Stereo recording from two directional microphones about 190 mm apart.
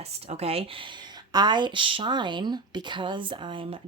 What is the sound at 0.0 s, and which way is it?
Speech, 35° right (ahead or behind).